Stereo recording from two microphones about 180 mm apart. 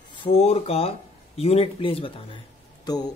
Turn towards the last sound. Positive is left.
turn(degrees=20)  # may be behind; listen again after turning